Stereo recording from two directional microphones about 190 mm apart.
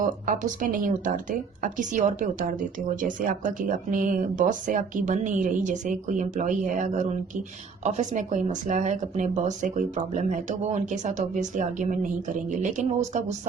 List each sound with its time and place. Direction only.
0.0 s speech: 45° right (ahead or behind)